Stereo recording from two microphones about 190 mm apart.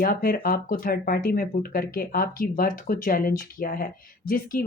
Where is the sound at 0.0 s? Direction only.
50° left (ahead or behind).